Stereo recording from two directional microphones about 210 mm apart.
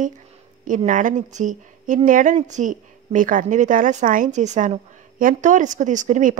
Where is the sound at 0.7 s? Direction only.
40° right (ahead or behind).